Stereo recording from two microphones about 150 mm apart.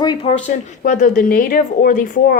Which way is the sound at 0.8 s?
60° left (ahead or behind).